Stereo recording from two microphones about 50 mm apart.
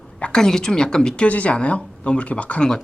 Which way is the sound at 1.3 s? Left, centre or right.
Left.